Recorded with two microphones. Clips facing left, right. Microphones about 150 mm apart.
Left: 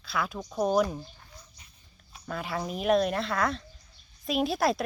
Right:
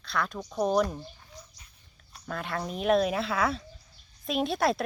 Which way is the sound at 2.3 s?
Centre (ahead or behind).